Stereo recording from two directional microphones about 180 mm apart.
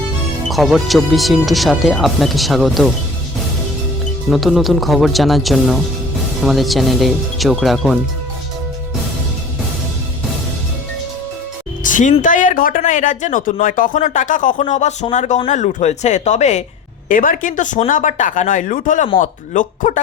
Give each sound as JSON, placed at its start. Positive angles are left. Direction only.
{"t": 0.5, "sound": "speech", "side_deg": 0}
{"t": 4.3, "sound": "speech", "side_deg": 0}
{"t": 11.8, "sound": "music", "side_deg": 45}
{"t": 12.2, "sound": "speech", "side_deg": 45}